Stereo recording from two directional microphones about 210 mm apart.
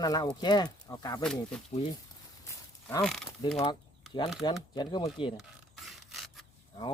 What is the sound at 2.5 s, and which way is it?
Livestock, 15° left (ahead or behind).